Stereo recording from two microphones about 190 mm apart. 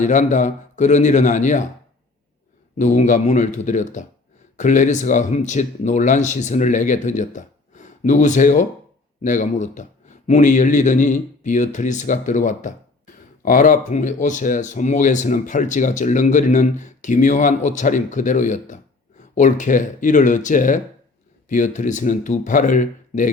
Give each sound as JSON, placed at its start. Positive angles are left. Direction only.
{"t": 0.0, "sound": "speech", "side_deg": 40}
{"t": 2.7, "sound": "speech", "side_deg": 40}